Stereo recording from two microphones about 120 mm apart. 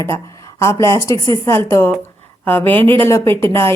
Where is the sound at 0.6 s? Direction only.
25° left (ahead or behind).